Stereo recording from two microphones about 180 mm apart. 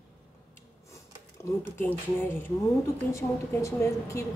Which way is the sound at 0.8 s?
15° left (ahead or behind).